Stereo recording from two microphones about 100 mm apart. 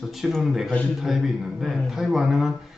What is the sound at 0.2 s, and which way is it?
A man's voice, 5° right (ahead or behind).